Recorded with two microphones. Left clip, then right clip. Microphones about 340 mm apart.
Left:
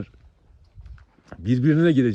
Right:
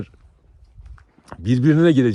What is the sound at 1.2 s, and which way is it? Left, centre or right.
Speech, centre.